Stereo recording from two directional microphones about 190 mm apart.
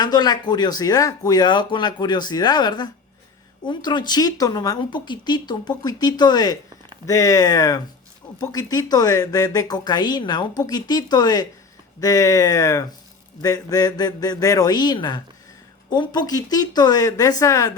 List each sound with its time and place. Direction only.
0.0 s speech: 20° left (ahead or behind)